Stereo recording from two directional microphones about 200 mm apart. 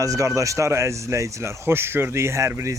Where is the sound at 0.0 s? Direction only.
15° right (ahead or behind).